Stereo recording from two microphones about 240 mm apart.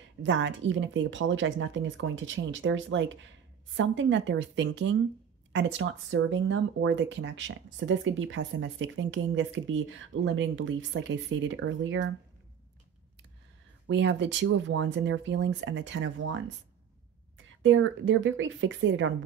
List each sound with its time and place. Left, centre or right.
0.2 s speech: right
13.8 s speech: right
17.6 s speech: right